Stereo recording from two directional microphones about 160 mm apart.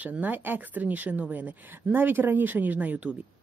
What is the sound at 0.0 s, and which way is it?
Speech, 10° right (ahead or behind).